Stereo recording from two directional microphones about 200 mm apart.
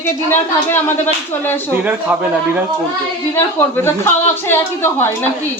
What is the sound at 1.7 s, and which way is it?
Speech, 10° right (ahead or behind).